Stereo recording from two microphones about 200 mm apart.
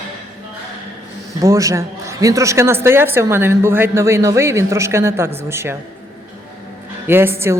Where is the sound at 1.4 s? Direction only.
15° right (ahead or behind).